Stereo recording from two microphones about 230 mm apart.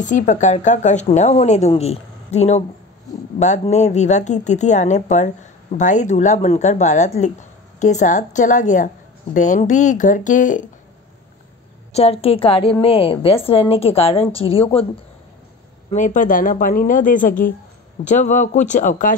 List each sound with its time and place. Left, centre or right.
0.0 s a woman's voice: left
11.9 s a woman's voice: left
15.9 s a woman's voice: left